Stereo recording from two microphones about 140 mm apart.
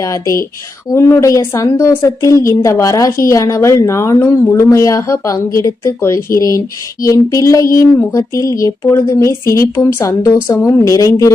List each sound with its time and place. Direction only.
0.0 s a woman's voice: 20° left (ahead or behind)